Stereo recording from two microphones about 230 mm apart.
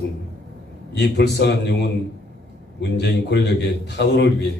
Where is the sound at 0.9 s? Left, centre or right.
Left.